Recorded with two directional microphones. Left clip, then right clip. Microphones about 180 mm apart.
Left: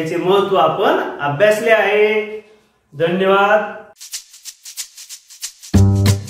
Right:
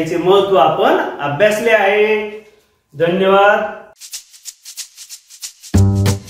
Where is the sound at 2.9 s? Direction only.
20° right (ahead or behind).